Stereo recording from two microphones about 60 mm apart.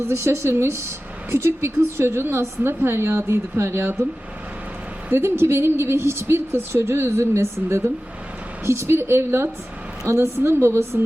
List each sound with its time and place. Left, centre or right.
0.0 s a woman's voice: right
5.1 s a woman's voice: right
8.6 s a woman's voice: right